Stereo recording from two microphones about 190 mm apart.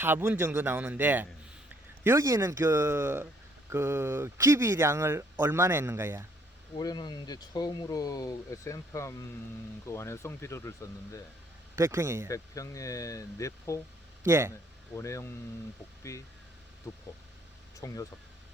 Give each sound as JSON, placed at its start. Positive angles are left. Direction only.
{"t": 0.0, "sound": "speech", "side_deg": -10}
{"t": 6.7, "sound": "speech", "side_deg": 25}
{"t": 11.8, "sound": "speech", "side_deg": -15}
{"t": 12.3, "sound": "speech", "side_deg": 15}
{"t": 14.3, "sound": "speech", "side_deg": -15}
{"t": 14.9, "sound": "speech", "side_deg": 15}
{"t": 17.7, "sound": "speech", "side_deg": 15}